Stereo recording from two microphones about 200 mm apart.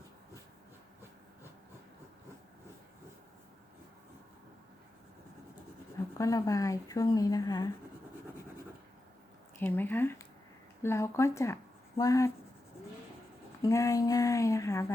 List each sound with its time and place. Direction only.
6.1 s a woman's voice: 15° left (ahead or behind)
9.6 s a woman's voice: 10° left (ahead or behind)
13.6 s a woman's voice: 15° left (ahead or behind)